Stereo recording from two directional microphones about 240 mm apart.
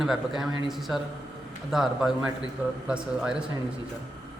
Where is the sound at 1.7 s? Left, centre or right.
Centre.